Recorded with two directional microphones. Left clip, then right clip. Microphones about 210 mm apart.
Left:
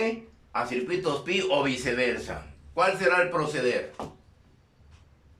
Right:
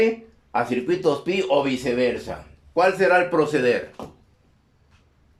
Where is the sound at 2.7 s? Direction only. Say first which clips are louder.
Right 5 dB; 30° right (ahead or behind).